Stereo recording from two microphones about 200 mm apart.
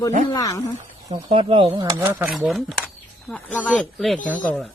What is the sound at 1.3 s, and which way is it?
Speech, 25° right (ahead or behind).